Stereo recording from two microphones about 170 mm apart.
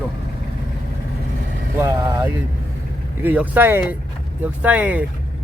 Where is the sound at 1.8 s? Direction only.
15° right (ahead or behind).